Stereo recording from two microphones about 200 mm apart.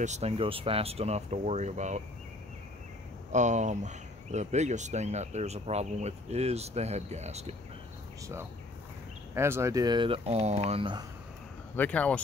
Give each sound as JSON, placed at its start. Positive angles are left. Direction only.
{"t": 0.0, "sound": "speech", "side_deg": -35}
{"t": 3.3, "sound": "speech", "side_deg": -35}
{"t": 9.3, "sound": "speech", "side_deg": -15}
{"t": 11.7, "sound": "speech", "side_deg": 10}